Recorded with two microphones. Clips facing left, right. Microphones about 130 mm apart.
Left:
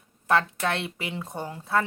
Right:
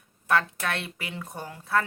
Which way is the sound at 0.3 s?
25° left (ahead or behind).